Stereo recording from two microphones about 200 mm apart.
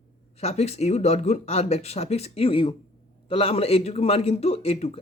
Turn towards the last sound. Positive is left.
turn(degrees=30)  # may be behind; listen again after turning